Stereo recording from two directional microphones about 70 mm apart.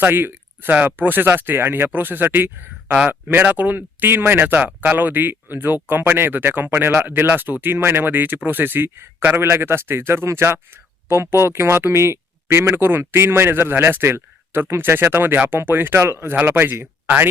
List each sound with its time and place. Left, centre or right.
0.0 s speech: right